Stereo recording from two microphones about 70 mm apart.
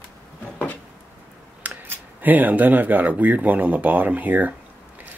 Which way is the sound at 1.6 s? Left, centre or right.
Right.